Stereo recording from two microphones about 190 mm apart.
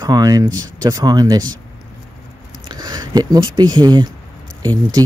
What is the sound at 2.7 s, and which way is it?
Speech, 20° right (ahead or behind).